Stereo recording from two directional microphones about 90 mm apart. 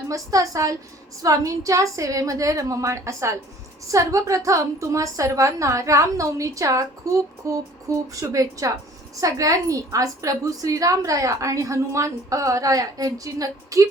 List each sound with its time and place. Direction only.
0.1 s a woman's voice: 40° right (ahead or behind)